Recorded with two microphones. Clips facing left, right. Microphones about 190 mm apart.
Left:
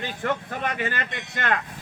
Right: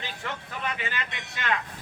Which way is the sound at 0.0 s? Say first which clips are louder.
Left 9 dB; 50° left (ahead or behind).